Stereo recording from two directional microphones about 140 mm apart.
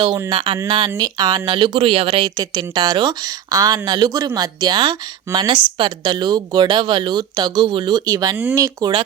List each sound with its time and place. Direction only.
0.3 s speech: 40° right (ahead or behind)
0.9 s a woman's voice: 25° right (ahead or behind)